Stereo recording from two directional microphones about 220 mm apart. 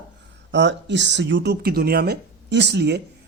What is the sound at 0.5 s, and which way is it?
Speech, 55° right (ahead or behind).